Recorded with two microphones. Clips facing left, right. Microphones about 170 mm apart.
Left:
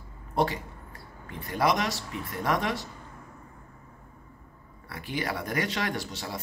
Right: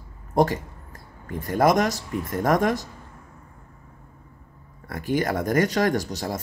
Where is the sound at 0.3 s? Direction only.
45° right (ahead or behind).